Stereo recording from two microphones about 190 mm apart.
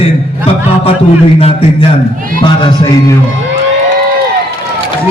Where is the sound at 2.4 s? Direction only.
25° left (ahead or behind).